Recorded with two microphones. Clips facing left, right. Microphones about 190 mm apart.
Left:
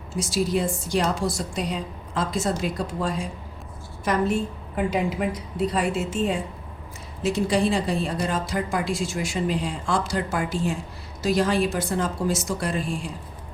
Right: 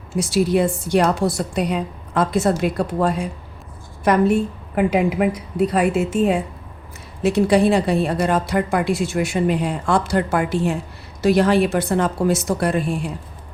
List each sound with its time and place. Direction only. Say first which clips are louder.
0.2 s a woman's voice: right 6 dB; 60° right (ahead or behind)